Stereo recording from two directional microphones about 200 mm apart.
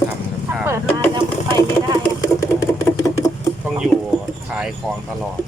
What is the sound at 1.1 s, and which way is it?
Sewing machine, 20° right (ahead or behind).